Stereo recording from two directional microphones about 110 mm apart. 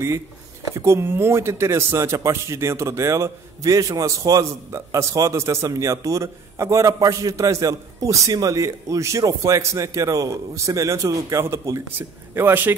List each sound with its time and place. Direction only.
0.7 s speech: 25° right (ahead or behind)